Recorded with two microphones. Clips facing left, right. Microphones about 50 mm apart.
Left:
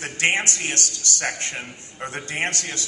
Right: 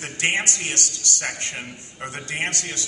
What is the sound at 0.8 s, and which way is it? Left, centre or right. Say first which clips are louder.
Speech: even; right.